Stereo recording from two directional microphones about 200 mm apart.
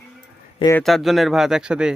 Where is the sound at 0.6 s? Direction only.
15° left (ahead or behind).